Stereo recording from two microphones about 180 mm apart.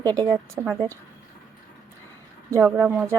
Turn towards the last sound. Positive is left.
turn(degrees=-10)  # may be behind; listen again after turning